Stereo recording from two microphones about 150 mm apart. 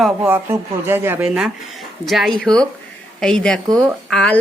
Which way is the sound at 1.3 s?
5° right (ahead or behind).